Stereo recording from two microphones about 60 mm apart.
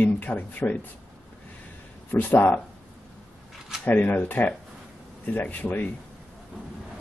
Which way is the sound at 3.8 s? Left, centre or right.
Left.